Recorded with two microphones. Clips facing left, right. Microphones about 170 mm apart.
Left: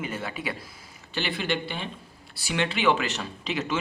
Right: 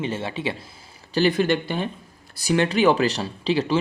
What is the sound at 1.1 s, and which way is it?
Speech, 40° right (ahead or behind).